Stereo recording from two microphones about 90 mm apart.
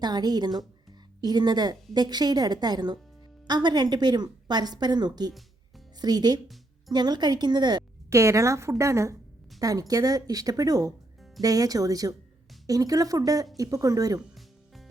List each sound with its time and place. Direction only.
0.0 s a woman's voice: 50° right (ahead or behind)
8.1 s speech: 35° right (ahead or behind)